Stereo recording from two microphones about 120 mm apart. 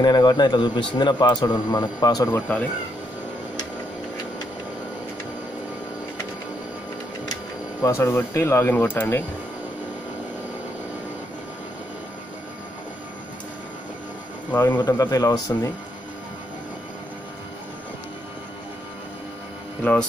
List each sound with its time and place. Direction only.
0.0 s a man's voice: 35° left (ahead or behind)
7.8 s speech: 25° left (ahead or behind)
14.7 s a man's voice: 35° left (ahead or behind)
19.8 s speech: 10° left (ahead or behind)